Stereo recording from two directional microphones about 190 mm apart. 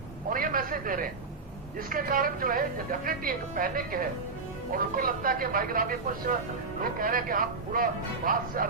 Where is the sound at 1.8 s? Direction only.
50° right (ahead or behind).